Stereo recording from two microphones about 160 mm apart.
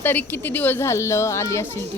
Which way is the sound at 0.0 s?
10° left (ahead or behind).